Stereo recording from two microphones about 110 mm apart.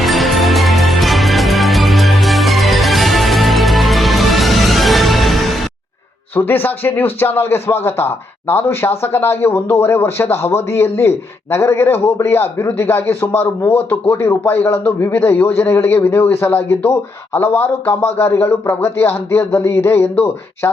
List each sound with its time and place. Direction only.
0.0 s music: centre (ahead or behind)
6.3 s speech: 20° left (ahead or behind)